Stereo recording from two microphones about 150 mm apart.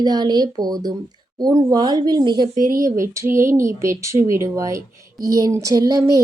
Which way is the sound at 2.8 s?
20° right (ahead or behind).